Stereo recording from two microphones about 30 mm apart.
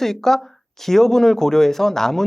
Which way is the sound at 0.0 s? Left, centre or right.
Centre.